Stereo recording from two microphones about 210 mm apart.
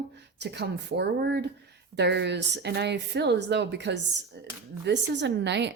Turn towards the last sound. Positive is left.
turn(degrees=-55)  # may be behind; listen again after turning